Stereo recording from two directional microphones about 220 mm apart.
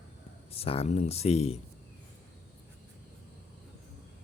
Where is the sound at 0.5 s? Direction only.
25° left (ahead or behind).